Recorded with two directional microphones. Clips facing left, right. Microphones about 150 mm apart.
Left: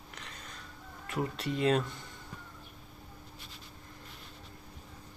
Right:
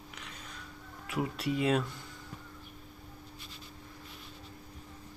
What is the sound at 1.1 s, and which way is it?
Speech, 5° right (ahead or behind).